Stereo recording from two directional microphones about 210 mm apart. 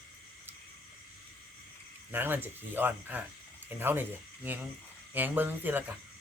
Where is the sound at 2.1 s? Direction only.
10° right (ahead or behind).